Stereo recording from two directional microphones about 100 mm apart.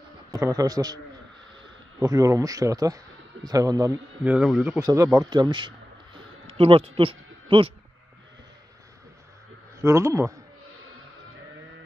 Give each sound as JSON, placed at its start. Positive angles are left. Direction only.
{"t": 0.3, "sound": "a man's voice", "side_deg": -35}
{"t": 4.2, "sound": "speech", "side_deg": -15}
{"t": 4.7, "sound": "speech", "side_deg": -35}
{"t": 6.1, "sound": "a sound", "side_deg": -70}
{"t": 9.8, "sound": "a man's voice", "side_deg": -30}